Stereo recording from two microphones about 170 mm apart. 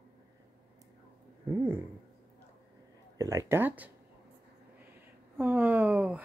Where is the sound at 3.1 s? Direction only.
20° right (ahead or behind).